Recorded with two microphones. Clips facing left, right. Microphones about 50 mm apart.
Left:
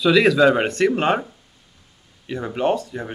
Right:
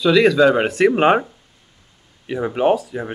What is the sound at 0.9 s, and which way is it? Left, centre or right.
Speech, centre.